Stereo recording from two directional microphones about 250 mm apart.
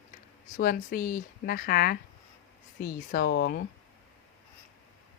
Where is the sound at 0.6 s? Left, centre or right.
Left.